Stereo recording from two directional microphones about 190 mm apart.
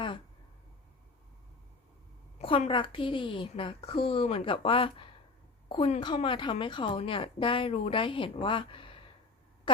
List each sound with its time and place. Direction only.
2.4 s speech: 30° left (ahead or behind)